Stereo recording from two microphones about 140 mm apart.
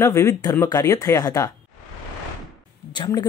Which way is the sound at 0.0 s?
20° left (ahead or behind).